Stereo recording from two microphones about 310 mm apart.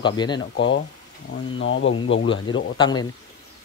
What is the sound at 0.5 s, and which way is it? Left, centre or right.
Speech, left.